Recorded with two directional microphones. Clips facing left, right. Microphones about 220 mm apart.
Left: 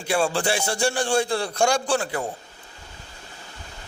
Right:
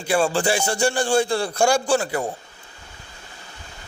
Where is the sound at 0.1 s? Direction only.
Centre (ahead or behind).